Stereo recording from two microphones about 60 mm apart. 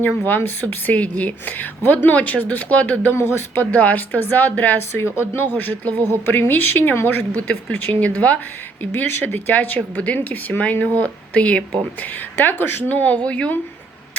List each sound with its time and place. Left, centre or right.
0.0 s speech: left
3.2 s speech: left
8.8 s speech: left; by 13.5 s centre